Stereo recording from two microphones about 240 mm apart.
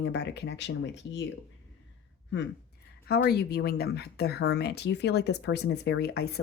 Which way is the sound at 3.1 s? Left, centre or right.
Left.